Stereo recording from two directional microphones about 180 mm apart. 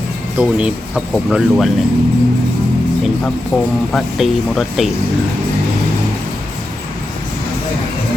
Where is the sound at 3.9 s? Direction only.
Centre (ahead or behind).